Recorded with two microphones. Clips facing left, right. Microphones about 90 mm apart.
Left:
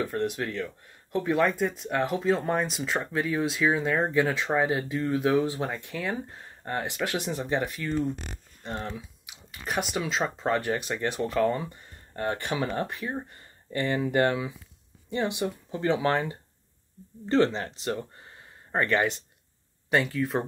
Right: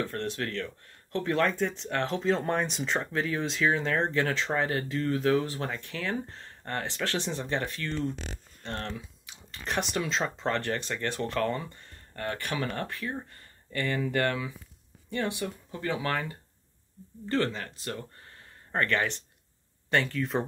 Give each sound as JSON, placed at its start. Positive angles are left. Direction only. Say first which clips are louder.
{"t": 0.0, "sound": "speech", "louder": "left 3 dB", "side_deg": 15}
{"t": 12.2, "sound": "speech", "louder": "left 4 dB", "side_deg": 20}